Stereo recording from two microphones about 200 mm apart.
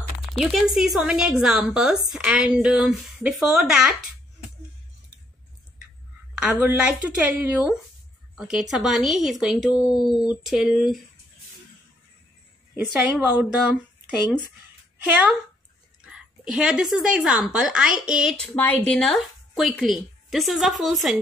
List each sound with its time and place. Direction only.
0.3 s a woman's voice: centre (ahead or behind)
6.3 s a woman's voice: 5° right (ahead or behind)
9.8 s speech: 20° left (ahead or behind)
10.0 s a woman's voice: centre (ahead or behind)
13.0 s speech: 5° right (ahead or behind)
15.0 s a woman's voice: 5° right (ahead or behind)
18.5 s a woman's voice: 10° left (ahead or behind)